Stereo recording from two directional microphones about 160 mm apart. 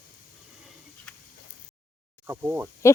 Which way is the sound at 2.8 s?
20° left (ahead or behind).